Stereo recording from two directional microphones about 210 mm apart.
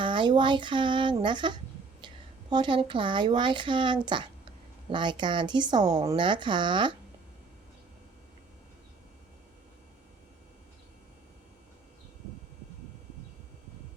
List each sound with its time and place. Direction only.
0.0 s a woman's voice: 20° right (ahead or behind)